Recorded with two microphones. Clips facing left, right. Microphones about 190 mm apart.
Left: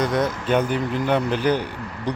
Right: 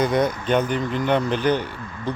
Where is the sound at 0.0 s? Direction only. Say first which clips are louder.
Right 1 dB; centre (ahead or behind).